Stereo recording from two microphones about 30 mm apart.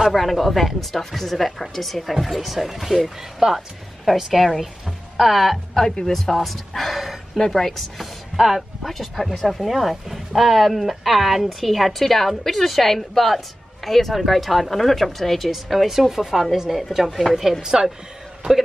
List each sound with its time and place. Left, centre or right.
0.1 s speech: centre
6.0 s speech: centre
7.4 s speech: centre
7.7 s speech: centre
15.5 s speech: centre
17.6 s speech: right